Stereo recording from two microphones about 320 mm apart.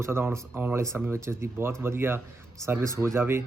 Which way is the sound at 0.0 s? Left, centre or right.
Centre.